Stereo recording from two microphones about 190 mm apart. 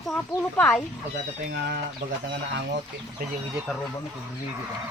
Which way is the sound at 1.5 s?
60° right (ahead or behind).